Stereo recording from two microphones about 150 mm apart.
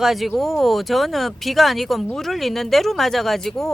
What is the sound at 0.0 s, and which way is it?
Speech, centre (ahead or behind).